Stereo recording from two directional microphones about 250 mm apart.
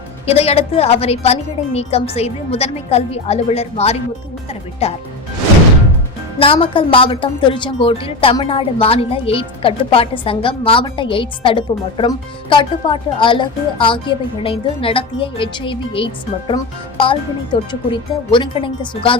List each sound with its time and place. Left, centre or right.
0.3 s a woman's voice: left
6.4 s a woman's voice: left